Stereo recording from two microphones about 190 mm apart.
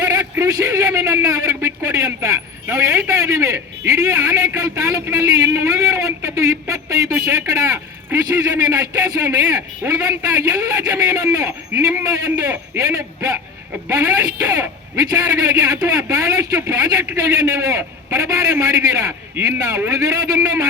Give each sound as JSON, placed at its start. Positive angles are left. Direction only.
{"t": 0.0, "sound": "a man's voice", "side_deg": -20}